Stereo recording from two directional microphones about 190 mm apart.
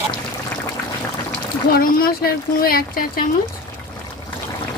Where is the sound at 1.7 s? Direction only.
50° left (ahead or behind).